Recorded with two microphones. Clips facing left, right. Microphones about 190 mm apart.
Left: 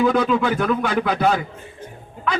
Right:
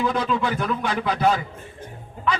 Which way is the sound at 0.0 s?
60° left (ahead or behind).